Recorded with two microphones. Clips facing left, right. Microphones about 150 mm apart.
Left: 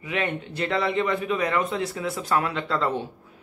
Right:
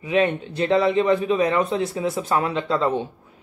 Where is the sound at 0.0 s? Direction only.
25° right (ahead or behind).